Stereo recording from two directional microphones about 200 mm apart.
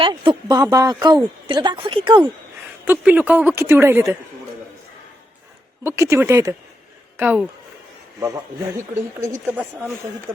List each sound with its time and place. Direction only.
0.0 s speech: 20° right (ahead or behind)
2.8 s a woman's voice: 10° right (ahead or behind)
5.8 s a woman's voice: 15° right (ahead or behind)
9.0 s a woman's voice: 10° right (ahead or behind)